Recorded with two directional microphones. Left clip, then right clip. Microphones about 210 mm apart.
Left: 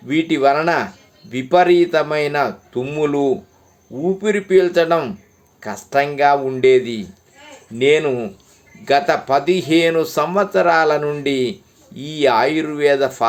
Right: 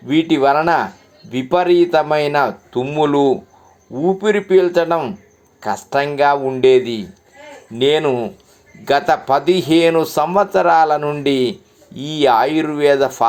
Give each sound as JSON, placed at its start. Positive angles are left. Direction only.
{"t": 0.1, "sound": "a man's voice", "side_deg": 0}